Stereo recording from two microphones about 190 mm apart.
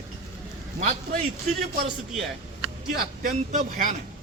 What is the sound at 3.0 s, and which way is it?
Speech, 45° right (ahead or behind).